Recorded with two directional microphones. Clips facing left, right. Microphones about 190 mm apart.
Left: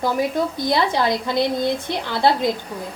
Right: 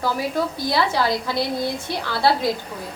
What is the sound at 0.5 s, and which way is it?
A woman's voice, 20° left (ahead or behind).